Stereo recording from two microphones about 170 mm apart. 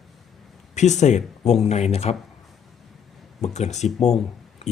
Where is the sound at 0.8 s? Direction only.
45° left (ahead or behind).